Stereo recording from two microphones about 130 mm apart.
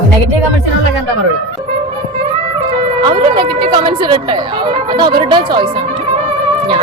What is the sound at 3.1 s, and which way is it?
Speech, 40° right (ahead or behind).